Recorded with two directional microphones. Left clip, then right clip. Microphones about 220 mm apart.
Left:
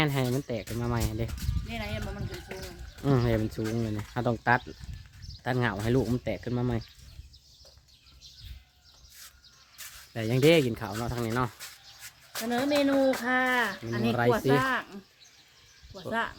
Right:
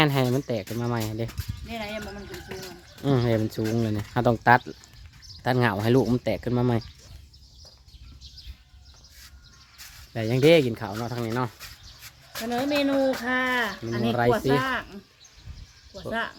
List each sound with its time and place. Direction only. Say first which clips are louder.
0.0 s speech: right 6 dB; 25° right (ahead or behind)
10.1 s speech: right 4 dB; 10° right (ahead or behind)
16.0 s speech: right 1 dB; 5° right (ahead or behind)